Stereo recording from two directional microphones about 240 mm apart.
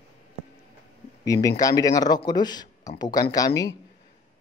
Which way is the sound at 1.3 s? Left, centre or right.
Centre.